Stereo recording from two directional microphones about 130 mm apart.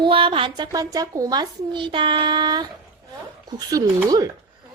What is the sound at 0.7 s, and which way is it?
Speech, 30° right (ahead or behind).